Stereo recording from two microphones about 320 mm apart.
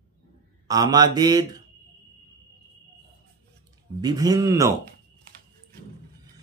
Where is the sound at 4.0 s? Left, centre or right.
Centre.